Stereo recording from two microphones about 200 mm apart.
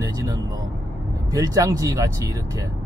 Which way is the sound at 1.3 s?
15° right (ahead or behind).